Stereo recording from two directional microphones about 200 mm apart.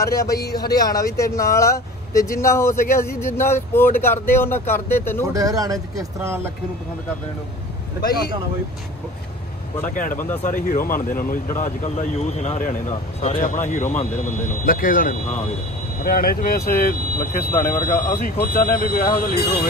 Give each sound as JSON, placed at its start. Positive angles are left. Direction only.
{"t": 0.0, "sound": "speech", "side_deg": 15}
{"t": 5.3, "sound": "speech", "side_deg": -15}
{"t": 9.8, "sound": "speech", "side_deg": 40}